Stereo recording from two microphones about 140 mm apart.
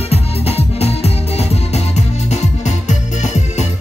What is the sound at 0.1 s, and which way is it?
Music, 45° left (ahead or behind).